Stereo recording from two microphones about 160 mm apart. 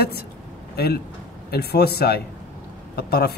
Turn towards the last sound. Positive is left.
turn(degrees=80)